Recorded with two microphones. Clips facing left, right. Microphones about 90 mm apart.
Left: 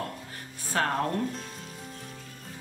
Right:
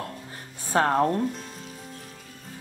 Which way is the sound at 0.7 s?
25° right (ahead or behind).